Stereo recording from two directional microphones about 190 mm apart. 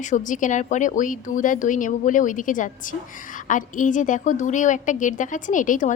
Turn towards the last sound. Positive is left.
turn(degrees=40)  # may be behind; listen again after turning